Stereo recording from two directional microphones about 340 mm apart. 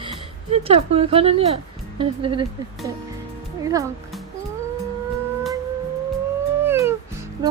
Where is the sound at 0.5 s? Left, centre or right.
Centre.